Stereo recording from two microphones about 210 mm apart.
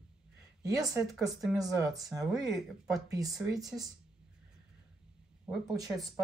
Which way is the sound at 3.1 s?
15° right (ahead or behind).